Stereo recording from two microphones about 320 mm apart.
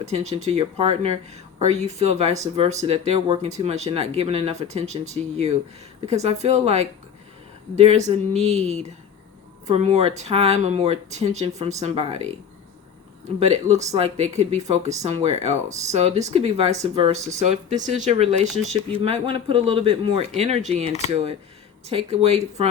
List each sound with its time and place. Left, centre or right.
0.0 s speech: right
11.5 s speech: centre
13.4 s speech: centre
18.6 s speech: centre
19.0 s speech: centre